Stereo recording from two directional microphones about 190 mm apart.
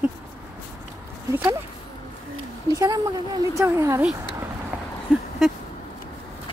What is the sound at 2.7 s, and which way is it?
A woman's voice, 20° right (ahead or behind).